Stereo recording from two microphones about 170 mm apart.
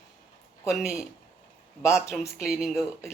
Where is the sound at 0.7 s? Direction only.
Centre (ahead or behind).